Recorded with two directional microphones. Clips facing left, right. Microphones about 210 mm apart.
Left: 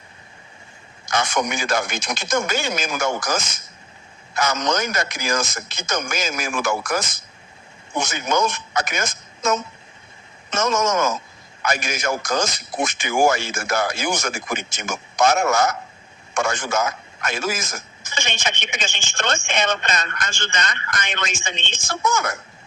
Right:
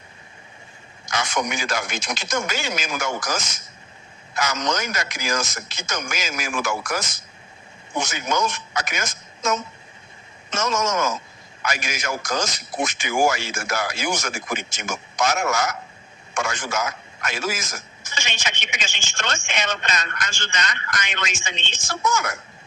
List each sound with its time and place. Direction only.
1.1 s a man's voice: 55° left (ahead or behind)
8.3 s a man's voice: 55° left (ahead or behind)